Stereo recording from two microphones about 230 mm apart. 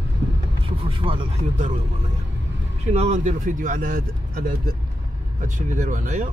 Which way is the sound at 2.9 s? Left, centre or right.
Right.